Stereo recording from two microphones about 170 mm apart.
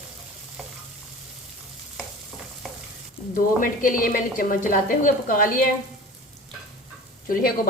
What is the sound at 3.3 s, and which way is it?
A woman's voice, 50° left (ahead or behind).